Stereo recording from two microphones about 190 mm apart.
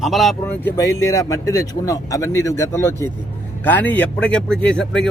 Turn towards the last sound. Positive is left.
turn(degrees=5)  # may be behind; listen again after turning